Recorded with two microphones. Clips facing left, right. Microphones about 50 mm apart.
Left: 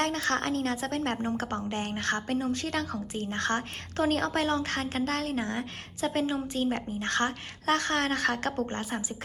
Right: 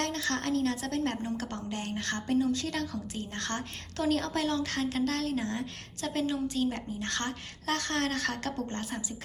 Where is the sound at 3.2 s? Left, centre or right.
Left.